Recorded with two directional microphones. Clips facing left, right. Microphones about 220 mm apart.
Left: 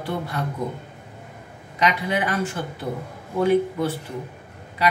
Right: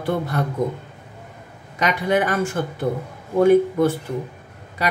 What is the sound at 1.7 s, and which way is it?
Speech, 45° right (ahead or behind).